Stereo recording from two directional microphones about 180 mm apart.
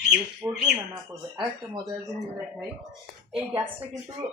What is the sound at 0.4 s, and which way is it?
Speech, 10° right (ahead or behind).